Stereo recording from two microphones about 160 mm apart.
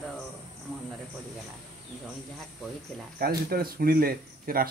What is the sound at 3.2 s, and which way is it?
Speech, 70° right (ahead or behind).